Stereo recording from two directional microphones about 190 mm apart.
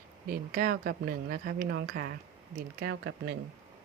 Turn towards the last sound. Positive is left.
turn(degrees=-60)  # may be behind; listen again after turning